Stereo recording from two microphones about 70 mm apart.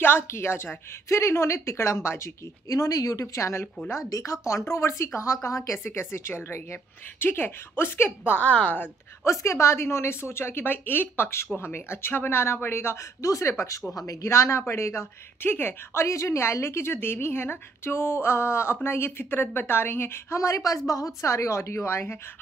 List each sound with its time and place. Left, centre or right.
0.0 s a woman's voice: left
2.7 s a woman's voice: left
9.2 s a woman's voice: left
20.3 s a woman's voice: left